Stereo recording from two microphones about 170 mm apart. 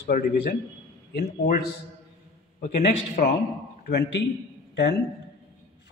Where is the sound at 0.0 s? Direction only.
65° left (ahead or behind).